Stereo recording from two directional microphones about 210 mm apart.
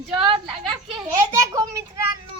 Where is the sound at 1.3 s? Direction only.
15° right (ahead or behind).